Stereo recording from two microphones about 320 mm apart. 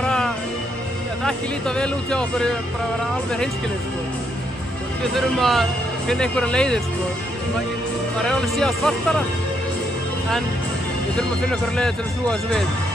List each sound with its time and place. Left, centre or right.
0.0 s music: centre
1.2 s speech: centre
5.1 s speech: centre
8.2 s speech: centre
11.7 s speech: centre